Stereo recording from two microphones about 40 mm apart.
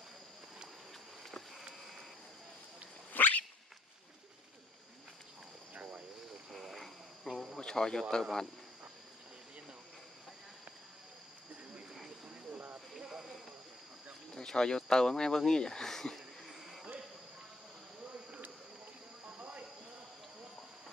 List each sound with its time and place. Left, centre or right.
3.1 s cat: left
6.5 s insect: centre
7.5 s a sound: centre
8.1 s speech: centre
12.4 s cricket: right
13.1 s cricket: centre
14.3 s speech: centre
16.2 s insect: centre
19.2 s a sound: right